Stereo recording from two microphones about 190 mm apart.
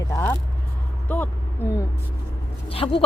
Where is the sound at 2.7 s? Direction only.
30° left (ahead or behind).